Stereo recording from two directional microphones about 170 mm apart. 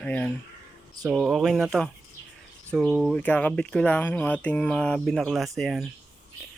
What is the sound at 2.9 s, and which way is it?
Speech, 5° right (ahead or behind).